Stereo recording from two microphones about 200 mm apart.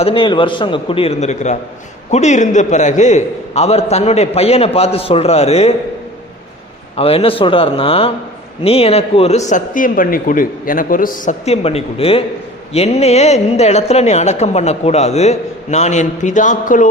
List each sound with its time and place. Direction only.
0.0 s a man's voice: 25° left (ahead or behind)
6.9 s a man's voice: 30° left (ahead or behind)